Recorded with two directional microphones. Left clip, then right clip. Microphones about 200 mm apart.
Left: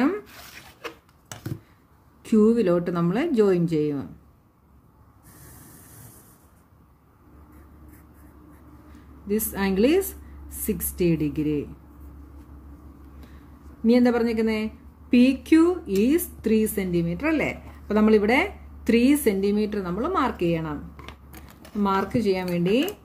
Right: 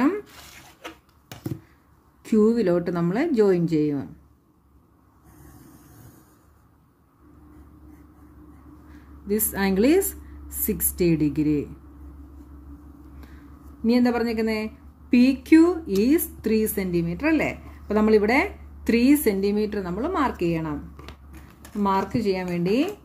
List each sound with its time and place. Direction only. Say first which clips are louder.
2.2 s a woman's voice: even; 10° right (ahead or behind)
9.3 s a woman's voice: right 1 dB; 15° right (ahead or behind)
13.8 s a woman's voice: left 2 dB; 10° right (ahead or behind)